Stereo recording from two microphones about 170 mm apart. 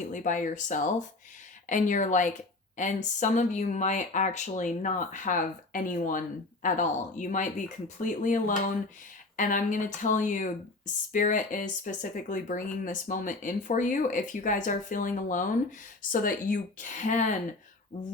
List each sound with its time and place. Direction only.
0.1 s speech: 50° left (ahead or behind)